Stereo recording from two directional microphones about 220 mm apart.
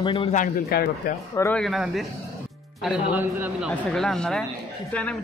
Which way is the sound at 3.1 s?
5° right (ahead or behind).